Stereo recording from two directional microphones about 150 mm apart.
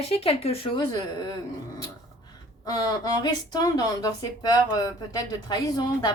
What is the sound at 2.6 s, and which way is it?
Speech, 25° left (ahead or behind).